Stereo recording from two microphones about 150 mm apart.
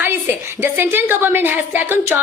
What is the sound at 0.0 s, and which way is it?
A woman's voice, 15° right (ahead or behind).